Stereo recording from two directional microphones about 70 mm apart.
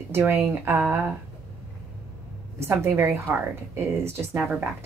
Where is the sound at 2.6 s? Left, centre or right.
Right.